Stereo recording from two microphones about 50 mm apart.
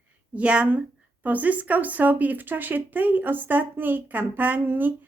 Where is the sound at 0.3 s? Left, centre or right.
Right.